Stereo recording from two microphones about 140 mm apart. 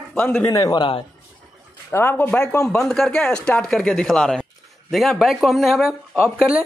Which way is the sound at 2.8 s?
5° left (ahead or behind).